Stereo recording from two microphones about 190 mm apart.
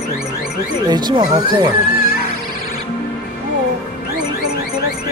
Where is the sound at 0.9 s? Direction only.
20° right (ahead or behind).